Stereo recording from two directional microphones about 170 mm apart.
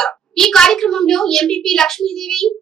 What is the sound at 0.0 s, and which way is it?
A woman's voice, 5° left (ahead or behind).